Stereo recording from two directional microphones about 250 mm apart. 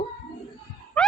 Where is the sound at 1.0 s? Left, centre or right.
Centre.